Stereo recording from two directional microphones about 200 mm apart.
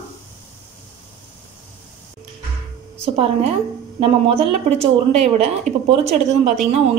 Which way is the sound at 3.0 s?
30° right (ahead or behind).